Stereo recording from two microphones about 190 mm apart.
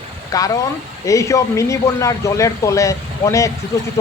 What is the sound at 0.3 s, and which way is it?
A man's voice, 20° left (ahead or behind).